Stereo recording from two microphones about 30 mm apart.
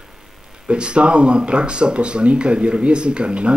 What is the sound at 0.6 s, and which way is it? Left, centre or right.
Speech, right.